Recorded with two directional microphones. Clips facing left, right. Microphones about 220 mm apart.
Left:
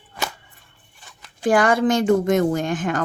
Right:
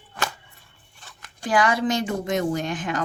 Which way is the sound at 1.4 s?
50° left (ahead or behind).